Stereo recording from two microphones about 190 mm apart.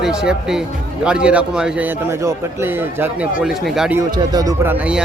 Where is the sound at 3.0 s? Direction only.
5° right (ahead or behind).